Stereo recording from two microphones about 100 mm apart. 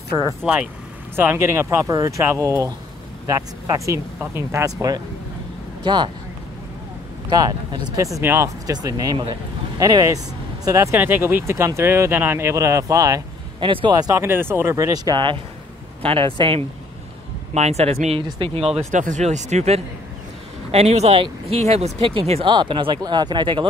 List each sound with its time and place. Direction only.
0.4 s speech: 10° right (ahead or behind)
1.1 s speech: 20° right (ahead or behind); by 5.0 s 35° right (ahead or behind)
7.2 s speech: 45° right (ahead or behind)
8.2 s speech: 20° right (ahead or behind)
8.6 s speech: 40° right (ahead or behind)
11.0 s speech: 20° right (ahead or behind)
13.6 s speech: 55° right (ahead or behind)
14.1 s speech: 25° right (ahead or behind)
15.1 s speech: 55° right (ahead or behind)
16.0 s speech: 70° right (ahead or behind)
17.6 s speech: 90° right; by 18.7 s 70° right (ahead or behind)
18.8 s speech: 90° right; by 22.5 s 75° right (ahead or behind)
22.5 s speech: 55° right (ahead or behind)